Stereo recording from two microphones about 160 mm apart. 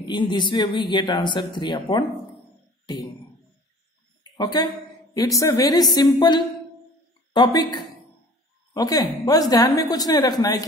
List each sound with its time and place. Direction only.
0.0 s speech: 30° left (ahead or behind)
5.1 s speech: 20° left (ahead or behind)
8.7 s speech: 25° left (ahead or behind)